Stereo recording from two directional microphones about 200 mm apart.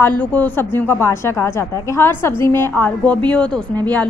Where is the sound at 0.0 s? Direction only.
5° left (ahead or behind).